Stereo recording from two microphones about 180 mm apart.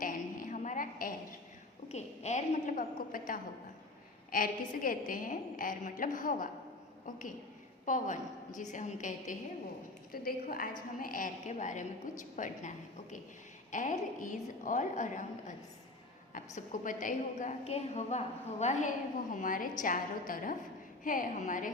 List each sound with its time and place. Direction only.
0.0 s a sound: 50° left (ahead or behind)
1.9 s a woman's voice: 40° left (ahead or behind)
7.9 s a woman's voice: 45° left (ahead or behind)
10.1 s a woman's voice: 55° left (ahead or behind)
16.6 s a woman's voice: 45° left (ahead or behind)